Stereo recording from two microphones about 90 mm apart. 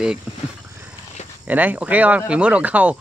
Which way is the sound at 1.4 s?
20° right (ahead or behind).